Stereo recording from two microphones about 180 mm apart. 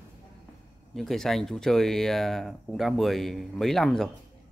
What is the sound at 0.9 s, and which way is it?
Speech, centre (ahead or behind).